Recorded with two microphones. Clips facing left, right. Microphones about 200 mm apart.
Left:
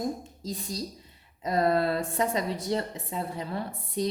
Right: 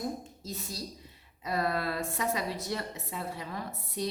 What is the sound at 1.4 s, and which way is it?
A woman's voice, 30° left (ahead or behind).